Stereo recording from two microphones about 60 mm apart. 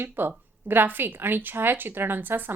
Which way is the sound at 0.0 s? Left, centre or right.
Right.